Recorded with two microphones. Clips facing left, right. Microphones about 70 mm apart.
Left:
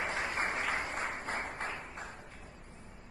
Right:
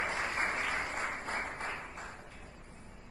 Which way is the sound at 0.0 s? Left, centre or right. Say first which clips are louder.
Even; right.